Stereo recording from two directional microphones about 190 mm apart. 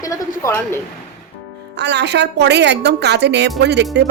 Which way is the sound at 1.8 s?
65° right (ahead or behind).